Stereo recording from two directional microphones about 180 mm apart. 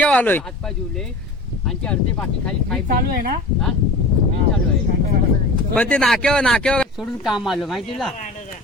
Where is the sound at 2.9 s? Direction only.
50° right (ahead or behind).